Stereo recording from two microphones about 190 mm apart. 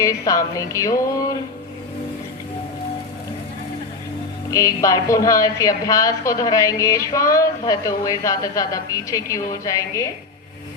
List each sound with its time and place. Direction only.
0.0 s a woman's voice: 15° left (ahead or behind)
4.5 s a woman's voice: 15° left (ahead or behind)